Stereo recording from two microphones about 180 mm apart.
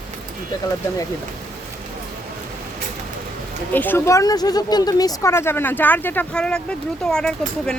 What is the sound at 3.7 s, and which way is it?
Speech, 10° left (ahead or behind).